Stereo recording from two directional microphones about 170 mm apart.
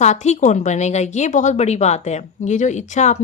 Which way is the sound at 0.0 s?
45° left (ahead or behind).